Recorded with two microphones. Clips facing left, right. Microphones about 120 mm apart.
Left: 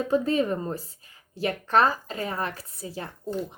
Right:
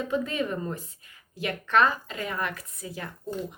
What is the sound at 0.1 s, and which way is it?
Speech, 35° left (ahead or behind).